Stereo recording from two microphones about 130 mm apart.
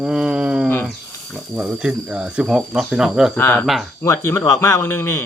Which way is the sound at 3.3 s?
15° left (ahead or behind).